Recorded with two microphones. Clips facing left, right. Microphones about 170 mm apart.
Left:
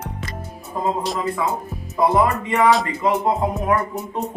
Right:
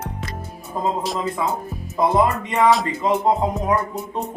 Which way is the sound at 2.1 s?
20° right (ahead or behind).